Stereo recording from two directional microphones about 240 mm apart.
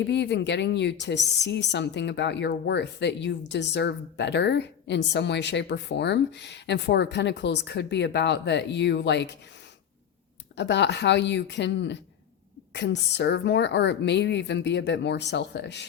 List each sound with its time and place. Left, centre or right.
0.0 s speech: left
10.5 s speech: left